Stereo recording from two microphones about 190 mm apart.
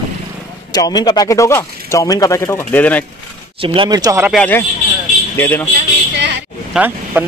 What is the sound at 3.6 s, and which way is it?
Speech, 25° right (ahead or behind).